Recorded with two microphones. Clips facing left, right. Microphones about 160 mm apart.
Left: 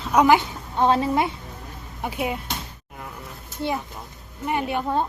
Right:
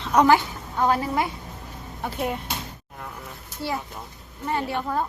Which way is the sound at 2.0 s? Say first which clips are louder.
Left 1 dB; 10° left (ahead or behind).